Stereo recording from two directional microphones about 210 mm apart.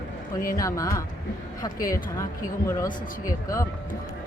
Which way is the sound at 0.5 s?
15° left (ahead or behind).